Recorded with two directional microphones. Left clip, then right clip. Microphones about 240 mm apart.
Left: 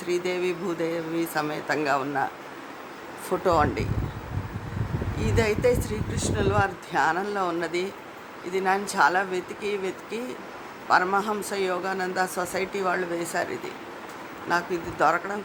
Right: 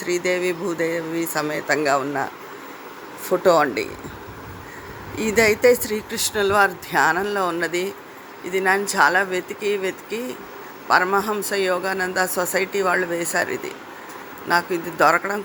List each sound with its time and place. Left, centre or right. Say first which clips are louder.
0.0 s a man's voice: right 5 dB; centre
3.2 s a man's voice: right 6 dB; centre
5.2 s a man's voice: right 7 dB; centre